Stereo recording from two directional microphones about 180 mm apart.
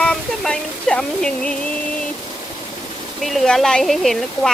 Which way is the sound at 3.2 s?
Centre (ahead or behind).